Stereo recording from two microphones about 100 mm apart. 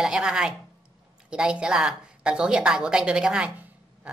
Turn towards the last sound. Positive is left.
turn(degrees=-10)  # may be behind; listen again after turning